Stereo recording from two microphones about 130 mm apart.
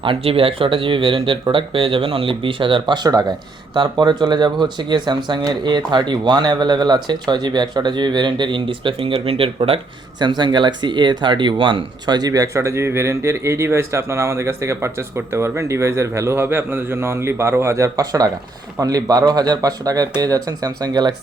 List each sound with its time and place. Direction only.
0.0 s speech: 45° right (ahead or behind)